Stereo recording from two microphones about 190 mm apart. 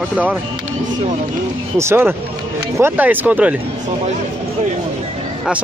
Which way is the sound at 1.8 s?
10° right (ahead or behind).